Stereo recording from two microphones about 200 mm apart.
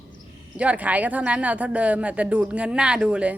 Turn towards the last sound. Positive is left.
turn(degrees=-5)  # may be behind; listen again after turning